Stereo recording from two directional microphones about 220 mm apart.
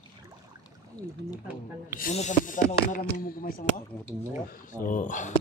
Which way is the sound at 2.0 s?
35° left (ahead or behind).